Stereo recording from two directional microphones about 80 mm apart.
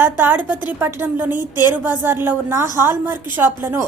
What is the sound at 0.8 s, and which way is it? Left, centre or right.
Speech, right.